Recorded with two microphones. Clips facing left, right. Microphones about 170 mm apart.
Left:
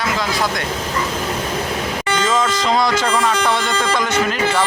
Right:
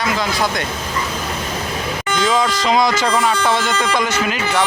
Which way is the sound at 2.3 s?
15° right (ahead or behind).